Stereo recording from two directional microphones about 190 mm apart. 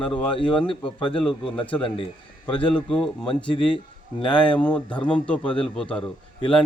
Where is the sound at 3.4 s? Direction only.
25° left (ahead or behind).